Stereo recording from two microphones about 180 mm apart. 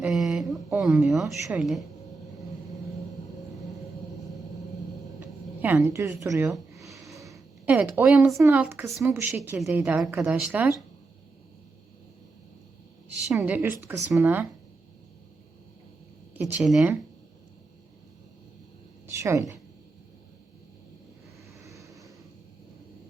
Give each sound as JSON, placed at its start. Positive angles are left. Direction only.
{"t": 0.0, "sound": "a woman's voice", "side_deg": 0}
{"t": 5.6, "sound": "a woman's voice", "side_deg": -15}
{"t": 7.6, "sound": "a woman's voice", "side_deg": -10}
{"t": 13.2, "sound": "a woman's voice", "side_deg": -5}
{"t": 16.3, "sound": "a woman's voice", "side_deg": -10}
{"t": 19.2, "sound": "a woman's voice", "side_deg": -15}
{"t": 21.6, "sound": "vehicle", "side_deg": -15}